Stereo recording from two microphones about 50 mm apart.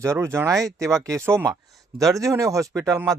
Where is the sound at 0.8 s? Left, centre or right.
Right.